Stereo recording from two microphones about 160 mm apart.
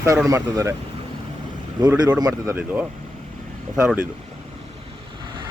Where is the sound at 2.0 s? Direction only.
25° right (ahead or behind).